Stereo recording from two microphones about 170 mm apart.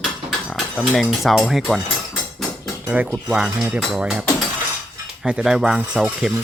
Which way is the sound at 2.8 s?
10° right (ahead or behind).